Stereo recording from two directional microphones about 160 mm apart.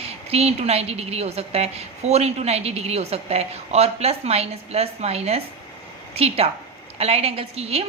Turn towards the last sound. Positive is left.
turn(degrees=-40)  # may be behind; listen again after turning